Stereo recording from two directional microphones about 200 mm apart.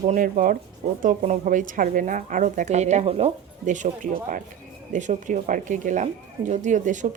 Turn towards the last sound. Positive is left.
turn(degrees=-40)  # may be behind; listen again after turning